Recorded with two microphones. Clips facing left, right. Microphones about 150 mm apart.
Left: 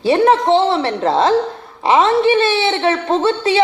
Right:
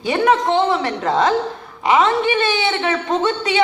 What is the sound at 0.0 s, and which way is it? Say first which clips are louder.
A woman's voice: left 4 dB; 30° left (ahead or behind).